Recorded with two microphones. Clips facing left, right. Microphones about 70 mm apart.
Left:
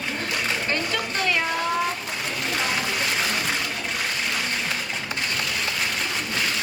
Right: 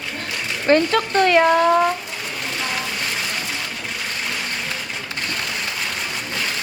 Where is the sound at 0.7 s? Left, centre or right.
Right.